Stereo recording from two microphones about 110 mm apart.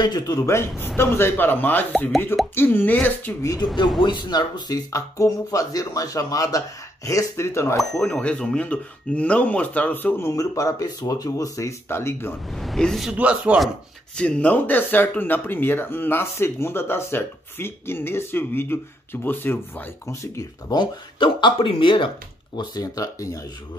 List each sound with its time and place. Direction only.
0.0 s speech: 35° left (ahead or behind); by 3.3 s 15° left (ahead or behind)
4.0 s speech: 40° left (ahead or behind); by 7.8 s 25° left (ahead or behind)
7.9 s speech: 10° left (ahead or behind)
12.5 s a woman's voice: 5° left (ahead or behind)
13.1 s speech: 10° right (ahead or behind)
14.1 s speech: 10° left (ahead or behind); by 20.7 s 30° left (ahead or behind)
20.7 s speech: 45° left (ahead or behind)
22.6 s speech: 35° left (ahead or behind)